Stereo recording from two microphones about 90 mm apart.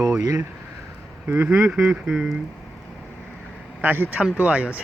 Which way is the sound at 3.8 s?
20° right (ahead or behind).